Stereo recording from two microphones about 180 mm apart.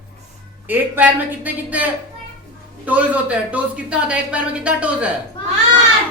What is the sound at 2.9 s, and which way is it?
A woman's voice, 5° right (ahead or behind).